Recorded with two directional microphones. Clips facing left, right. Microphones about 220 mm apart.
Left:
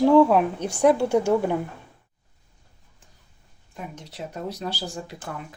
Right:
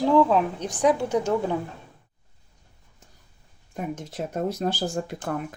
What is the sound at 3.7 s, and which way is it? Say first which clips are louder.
Speech: right 6 dB; 50° right (ahead or behind).